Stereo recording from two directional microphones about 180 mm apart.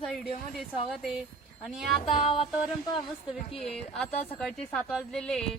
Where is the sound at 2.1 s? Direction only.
30° left (ahead or behind).